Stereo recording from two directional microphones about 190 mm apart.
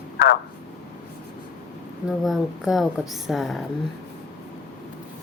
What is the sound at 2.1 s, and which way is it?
Speech, centre (ahead or behind).